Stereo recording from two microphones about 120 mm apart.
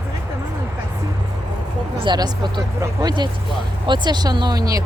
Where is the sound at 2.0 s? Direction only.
35° right (ahead or behind).